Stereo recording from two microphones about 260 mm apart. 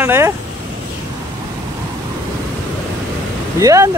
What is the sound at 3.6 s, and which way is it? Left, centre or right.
Speech, centre.